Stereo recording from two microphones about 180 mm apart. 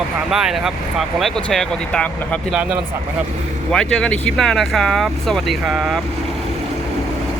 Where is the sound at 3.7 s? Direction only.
5° left (ahead or behind).